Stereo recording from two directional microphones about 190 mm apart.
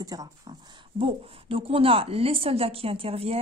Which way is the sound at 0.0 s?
20° right (ahead or behind).